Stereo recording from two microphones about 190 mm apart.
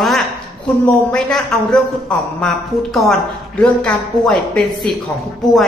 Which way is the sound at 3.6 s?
5° left (ahead or behind).